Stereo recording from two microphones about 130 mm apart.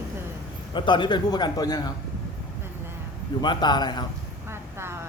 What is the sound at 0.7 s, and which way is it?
A man's voice, 35° left (ahead or behind).